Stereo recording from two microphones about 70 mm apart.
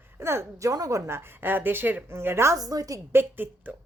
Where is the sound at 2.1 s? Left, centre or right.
Right.